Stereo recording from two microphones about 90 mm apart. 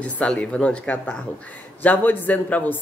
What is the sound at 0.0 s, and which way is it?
A man's voice, 15° left (ahead or behind).